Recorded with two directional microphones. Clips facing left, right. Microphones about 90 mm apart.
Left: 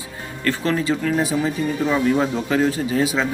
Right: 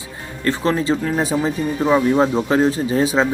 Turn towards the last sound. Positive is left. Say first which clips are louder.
# right 3 dB
turn(degrees=-30)  # may be behind; listen again after turning